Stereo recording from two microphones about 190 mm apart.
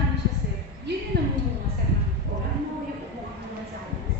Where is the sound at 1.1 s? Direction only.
60° right (ahead or behind).